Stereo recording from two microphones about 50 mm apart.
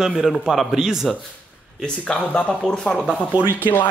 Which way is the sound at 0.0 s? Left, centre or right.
Centre.